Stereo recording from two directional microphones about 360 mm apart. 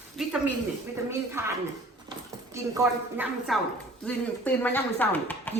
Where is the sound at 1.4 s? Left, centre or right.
Centre.